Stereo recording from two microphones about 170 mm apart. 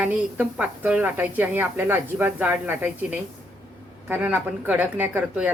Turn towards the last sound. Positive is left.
turn(degrees=-10)  # may be behind; listen again after turning